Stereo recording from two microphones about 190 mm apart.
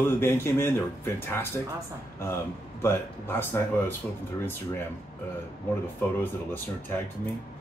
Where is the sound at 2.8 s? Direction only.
15° left (ahead or behind).